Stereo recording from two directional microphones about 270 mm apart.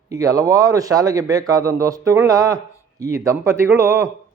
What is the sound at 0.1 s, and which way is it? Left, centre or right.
Speech, centre.